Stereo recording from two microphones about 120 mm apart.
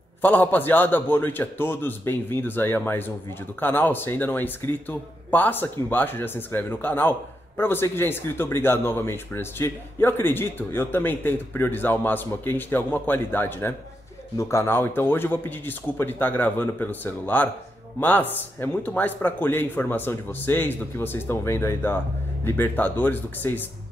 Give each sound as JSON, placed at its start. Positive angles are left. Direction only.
{"t": 0.2, "sound": "speech", "side_deg": 15}